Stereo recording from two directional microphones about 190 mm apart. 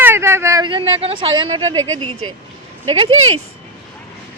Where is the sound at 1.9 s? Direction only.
90° right.